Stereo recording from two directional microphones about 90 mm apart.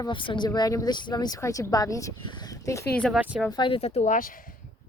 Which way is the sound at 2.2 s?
55° left (ahead or behind).